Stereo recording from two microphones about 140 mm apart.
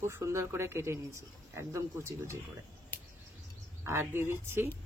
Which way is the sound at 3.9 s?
15° right (ahead or behind).